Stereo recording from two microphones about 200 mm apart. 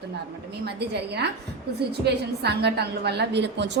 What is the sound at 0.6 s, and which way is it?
A woman's voice, 55° right (ahead or behind).